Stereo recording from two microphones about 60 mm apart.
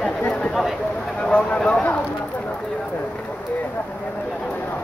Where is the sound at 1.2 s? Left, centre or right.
Left.